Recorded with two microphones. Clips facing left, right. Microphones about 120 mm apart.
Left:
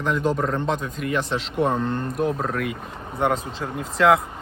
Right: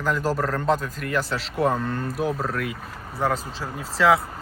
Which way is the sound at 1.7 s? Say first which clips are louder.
Left 3 dB; 25° left (ahead or behind).